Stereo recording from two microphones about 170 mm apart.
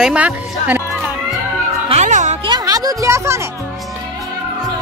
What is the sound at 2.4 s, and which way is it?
Music, 25° right (ahead or behind).